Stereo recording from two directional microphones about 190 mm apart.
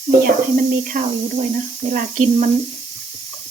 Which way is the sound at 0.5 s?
45° right (ahead or behind).